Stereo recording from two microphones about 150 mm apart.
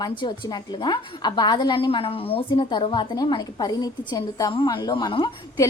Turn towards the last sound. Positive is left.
turn(degrees=30)  # may be behind; listen again after turning